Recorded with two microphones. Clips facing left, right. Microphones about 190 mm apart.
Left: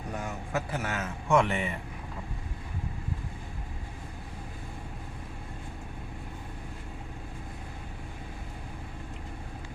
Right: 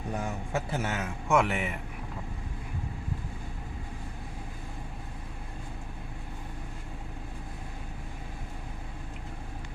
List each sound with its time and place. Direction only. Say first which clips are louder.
0.5 s a man's voice: even; 25° right (ahead or behind); by 1.7 s 5° right (ahead or behind)